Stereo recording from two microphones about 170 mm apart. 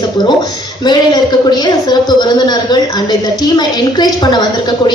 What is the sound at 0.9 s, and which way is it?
A woman's voice, 25° left (ahead or behind).